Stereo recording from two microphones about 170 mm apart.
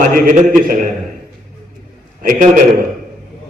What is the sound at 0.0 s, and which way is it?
Speech, 50° right (ahead or behind).